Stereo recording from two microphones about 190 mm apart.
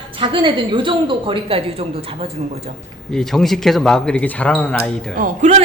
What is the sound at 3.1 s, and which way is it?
Speech, centre (ahead or behind).